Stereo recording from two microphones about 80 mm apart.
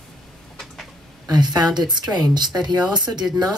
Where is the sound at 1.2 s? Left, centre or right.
Right.